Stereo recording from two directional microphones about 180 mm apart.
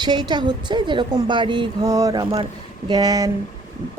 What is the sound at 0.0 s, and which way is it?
Speech, 25° right (ahead or behind).